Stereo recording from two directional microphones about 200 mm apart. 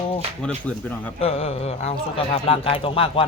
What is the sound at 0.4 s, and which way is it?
Speech, 5° left (ahead or behind).